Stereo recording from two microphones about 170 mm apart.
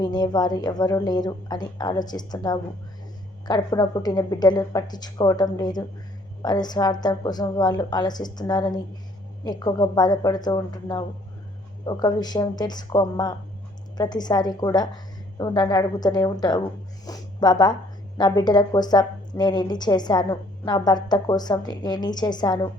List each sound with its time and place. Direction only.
0.0 s a woman's voice: 25° left (ahead or behind)